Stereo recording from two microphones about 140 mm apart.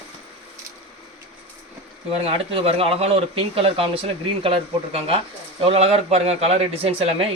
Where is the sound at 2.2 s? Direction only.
45° right (ahead or behind).